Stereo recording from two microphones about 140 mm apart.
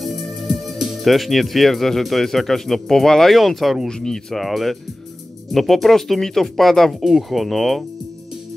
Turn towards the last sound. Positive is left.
turn(degrees=0)  # may be behind; listen again after turning